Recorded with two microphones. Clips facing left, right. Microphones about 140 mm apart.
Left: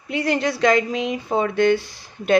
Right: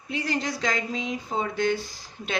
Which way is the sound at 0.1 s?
65° left (ahead or behind).